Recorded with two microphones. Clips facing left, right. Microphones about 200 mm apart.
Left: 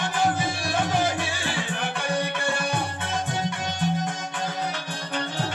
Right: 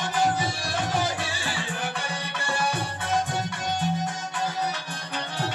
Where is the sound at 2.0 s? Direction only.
55° left (ahead or behind).